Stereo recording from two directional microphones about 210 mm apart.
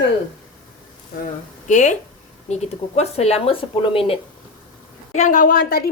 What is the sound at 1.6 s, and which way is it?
A woman's voice, 35° left (ahead or behind).